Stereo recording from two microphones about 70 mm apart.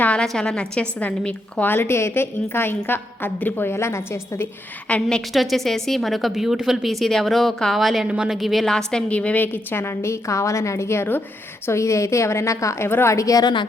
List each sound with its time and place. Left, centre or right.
0.0 s a woman's voice: centre
1.6 s a woman's voice: left
5.0 s a woman's voice: centre
8.0 s a woman's voice: centre
8.4 s a woman's voice: centre
8.9 s a woman's voice: centre; by 12.9 s left
12.9 s a woman's voice: left
13.1 s a woman's voice: left
13.4 s a woman's voice: left